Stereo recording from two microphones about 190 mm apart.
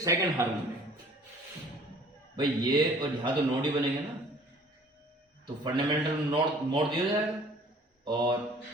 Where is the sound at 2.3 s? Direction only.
25° right (ahead or behind).